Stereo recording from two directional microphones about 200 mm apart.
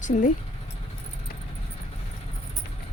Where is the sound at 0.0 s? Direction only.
40° left (ahead or behind).